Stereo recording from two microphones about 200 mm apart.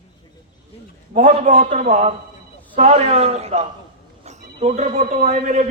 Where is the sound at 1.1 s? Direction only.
40° right (ahead or behind).